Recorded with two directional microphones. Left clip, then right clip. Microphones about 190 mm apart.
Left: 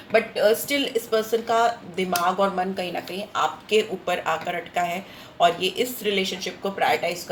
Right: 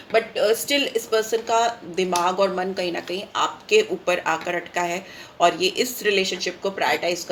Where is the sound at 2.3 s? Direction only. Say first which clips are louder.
Right 1 dB; 45° right (ahead or behind).